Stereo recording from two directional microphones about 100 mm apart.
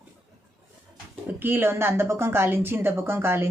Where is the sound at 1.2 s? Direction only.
20° right (ahead or behind).